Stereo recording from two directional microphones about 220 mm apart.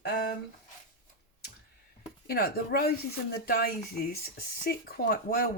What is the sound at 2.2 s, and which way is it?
Speech, 45° left (ahead or behind).